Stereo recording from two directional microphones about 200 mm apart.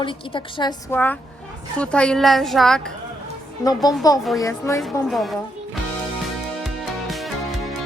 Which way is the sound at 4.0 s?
15° left (ahead or behind).